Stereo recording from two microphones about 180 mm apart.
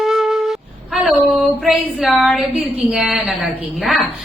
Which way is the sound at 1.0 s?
Centre (ahead or behind).